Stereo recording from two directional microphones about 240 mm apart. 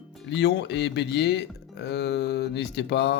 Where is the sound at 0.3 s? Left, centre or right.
Left.